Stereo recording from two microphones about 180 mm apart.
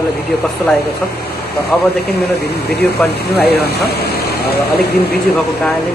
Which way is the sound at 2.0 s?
60° left (ahead or behind).